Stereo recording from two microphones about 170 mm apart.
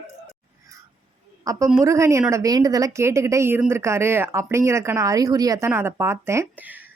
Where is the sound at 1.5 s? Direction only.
20° right (ahead or behind).